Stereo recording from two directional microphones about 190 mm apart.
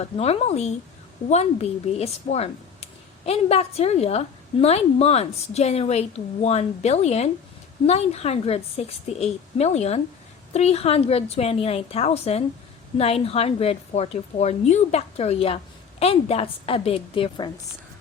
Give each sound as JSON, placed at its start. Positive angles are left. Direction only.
{"t": 0.0, "sound": "speech", "side_deg": 35}